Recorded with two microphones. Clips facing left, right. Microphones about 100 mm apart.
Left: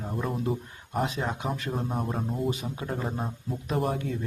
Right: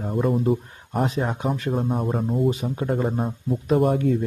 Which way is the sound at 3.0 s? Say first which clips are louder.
Right 8 dB; 5° right (ahead or behind).